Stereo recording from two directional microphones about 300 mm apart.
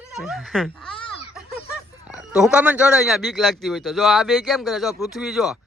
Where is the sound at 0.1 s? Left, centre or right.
Centre.